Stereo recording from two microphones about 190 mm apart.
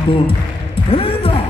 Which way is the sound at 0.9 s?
30° left (ahead or behind).